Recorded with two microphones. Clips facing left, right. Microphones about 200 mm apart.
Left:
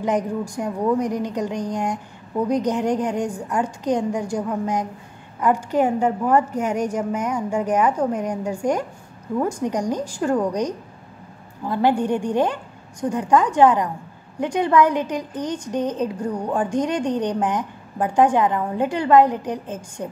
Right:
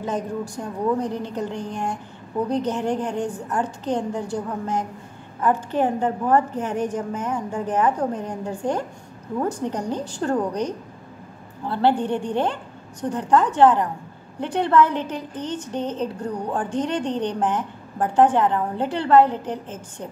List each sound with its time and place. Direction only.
0.0 s a woman's voice: 15° left (ahead or behind)